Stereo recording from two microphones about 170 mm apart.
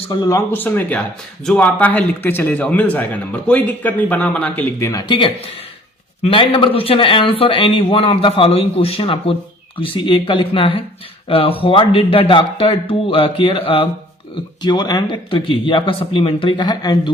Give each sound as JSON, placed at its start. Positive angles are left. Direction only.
{"t": 0.1, "sound": "speech", "side_deg": 25}
{"t": 0.5, "sound": "a man's voice", "side_deg": 10}